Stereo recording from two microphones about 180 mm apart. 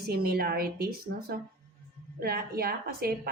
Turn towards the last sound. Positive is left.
turn(degrees=-55)  # may be behind; listen again after turning